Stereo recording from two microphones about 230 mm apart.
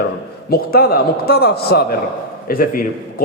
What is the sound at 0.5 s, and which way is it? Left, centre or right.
A man's voice, left.